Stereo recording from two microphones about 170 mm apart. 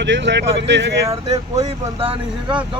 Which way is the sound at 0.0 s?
90° right.